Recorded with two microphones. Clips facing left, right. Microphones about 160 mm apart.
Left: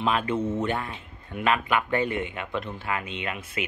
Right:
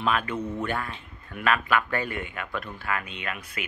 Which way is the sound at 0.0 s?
25° left (ahead or behind).